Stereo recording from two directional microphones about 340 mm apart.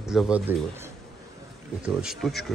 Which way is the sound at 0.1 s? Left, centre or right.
Centre.